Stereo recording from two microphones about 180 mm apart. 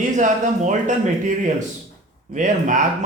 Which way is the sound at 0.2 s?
45° right (ahead or behind).